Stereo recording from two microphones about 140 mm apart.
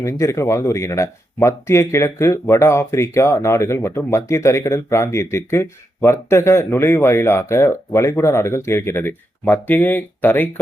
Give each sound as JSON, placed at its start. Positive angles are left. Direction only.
{"t": 0.0, "sound": "speech", "side_deg": 20}